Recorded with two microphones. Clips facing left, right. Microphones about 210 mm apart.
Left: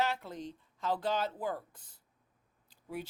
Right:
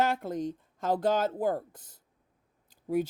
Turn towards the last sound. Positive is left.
turn(degrees=-45)  # may be behind; listen again after turning